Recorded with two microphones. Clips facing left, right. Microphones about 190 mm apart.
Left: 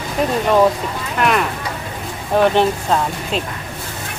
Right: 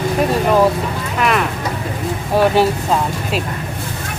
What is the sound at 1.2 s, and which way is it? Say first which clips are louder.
Speech: even; centre (ahead or behind).